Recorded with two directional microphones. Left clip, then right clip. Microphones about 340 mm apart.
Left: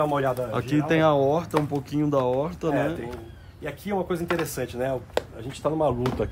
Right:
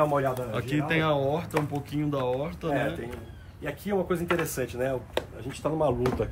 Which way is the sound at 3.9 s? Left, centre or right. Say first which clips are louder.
Left 1 dB; centre.